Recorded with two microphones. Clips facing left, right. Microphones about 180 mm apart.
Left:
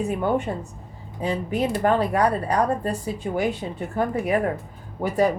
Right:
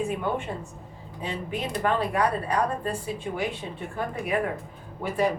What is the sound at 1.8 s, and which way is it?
Speech, 40° left (ahead or behind).